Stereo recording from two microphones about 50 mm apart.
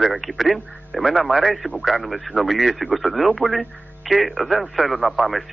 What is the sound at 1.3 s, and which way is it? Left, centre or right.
Speech, centre.